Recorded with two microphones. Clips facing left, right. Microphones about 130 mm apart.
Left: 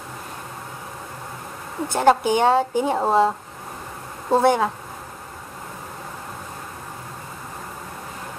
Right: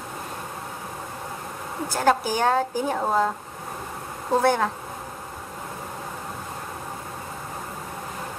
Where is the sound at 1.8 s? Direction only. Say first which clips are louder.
Left 4 dB; 25° left (ahead or behind).